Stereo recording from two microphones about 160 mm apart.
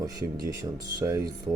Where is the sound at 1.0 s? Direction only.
20° right (ahead or behind).